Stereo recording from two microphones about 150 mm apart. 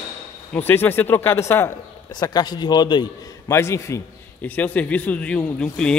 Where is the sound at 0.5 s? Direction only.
15° left (ahead or behind).